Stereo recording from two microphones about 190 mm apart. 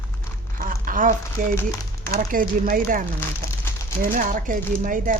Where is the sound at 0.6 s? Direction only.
45° right (ahead or behind).